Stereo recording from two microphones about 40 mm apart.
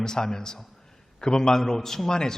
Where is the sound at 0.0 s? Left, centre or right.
Centre.